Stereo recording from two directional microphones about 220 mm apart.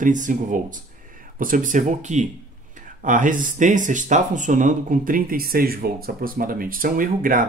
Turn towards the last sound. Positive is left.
turn(degrees=-40)  # may be behind; listen again after turning